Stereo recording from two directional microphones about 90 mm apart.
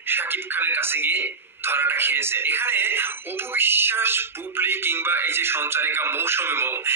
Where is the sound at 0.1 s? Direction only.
25° right (ahead or behind).